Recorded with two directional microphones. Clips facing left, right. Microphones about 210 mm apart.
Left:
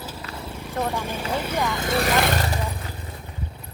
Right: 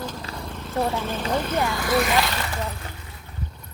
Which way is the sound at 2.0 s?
50° left (ahead or behind).